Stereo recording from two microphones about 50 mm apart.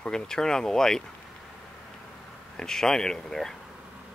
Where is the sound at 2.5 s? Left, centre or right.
Centre.